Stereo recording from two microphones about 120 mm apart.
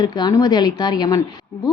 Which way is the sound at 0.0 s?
35° left (ahead or behind).